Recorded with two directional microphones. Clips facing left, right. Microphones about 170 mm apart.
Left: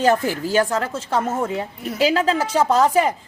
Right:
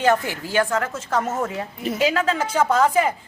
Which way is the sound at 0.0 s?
40° left (ahead or behind).